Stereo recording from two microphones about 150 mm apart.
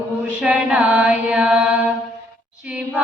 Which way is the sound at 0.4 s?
10° right (ahead or behind).